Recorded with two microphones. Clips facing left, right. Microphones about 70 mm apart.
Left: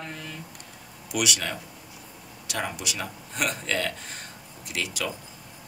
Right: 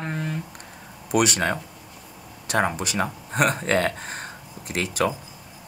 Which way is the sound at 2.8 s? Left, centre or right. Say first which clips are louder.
Right 7 dB; right.